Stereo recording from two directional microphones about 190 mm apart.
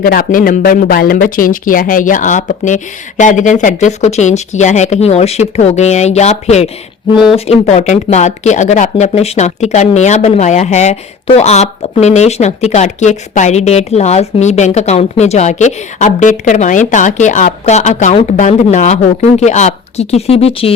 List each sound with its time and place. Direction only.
0.0 s speech: 45° left (ahead or behind); by 20.7 s 30° left (ahead or behind)